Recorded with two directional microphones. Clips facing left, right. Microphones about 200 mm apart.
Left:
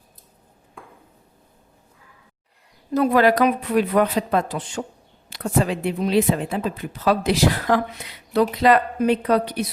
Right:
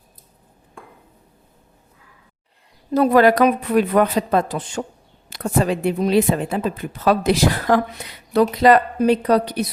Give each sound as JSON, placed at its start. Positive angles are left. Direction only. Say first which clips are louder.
{"t": 2.9, "sound": "a woman's voice", "louder": "right 3 dB", "side_deg": -40}
{"t": 8.6, "sound": "a woman's voice", "louder": "right 4 dB", "side_deg": -40}